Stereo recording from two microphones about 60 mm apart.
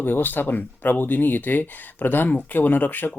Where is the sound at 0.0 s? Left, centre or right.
Left.